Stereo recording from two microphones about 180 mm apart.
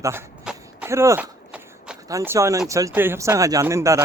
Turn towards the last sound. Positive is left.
turn(degrees=-15)  # may be behind; listen again after turning